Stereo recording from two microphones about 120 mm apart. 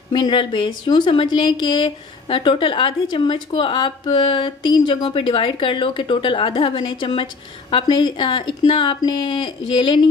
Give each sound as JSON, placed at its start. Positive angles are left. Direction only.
{"t": 0.1, "sound": "a woman's voice", "side_deg": 40}